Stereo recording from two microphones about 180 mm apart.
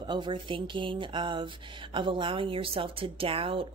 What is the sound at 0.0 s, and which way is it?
A woman's voice, 25° right (ahead or behind).